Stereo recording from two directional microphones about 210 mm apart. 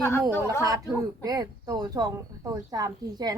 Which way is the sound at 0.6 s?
15° right (ahead or behind).